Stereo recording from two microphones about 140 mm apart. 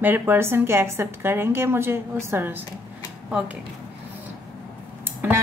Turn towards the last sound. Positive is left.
turn(degrees=-15)  # may be behind; listen again after turning